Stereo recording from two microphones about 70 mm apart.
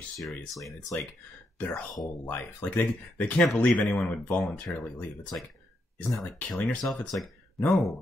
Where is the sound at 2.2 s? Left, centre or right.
Left.